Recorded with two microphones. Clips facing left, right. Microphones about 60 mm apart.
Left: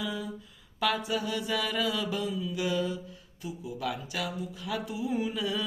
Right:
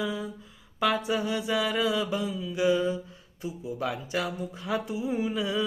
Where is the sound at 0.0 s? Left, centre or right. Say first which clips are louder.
Right 3 dB; right.